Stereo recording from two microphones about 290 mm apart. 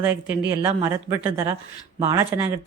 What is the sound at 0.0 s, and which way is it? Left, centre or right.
Speech, centre.